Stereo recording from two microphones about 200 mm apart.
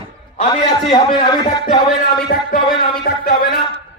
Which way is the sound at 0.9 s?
20° left (ahead or behind).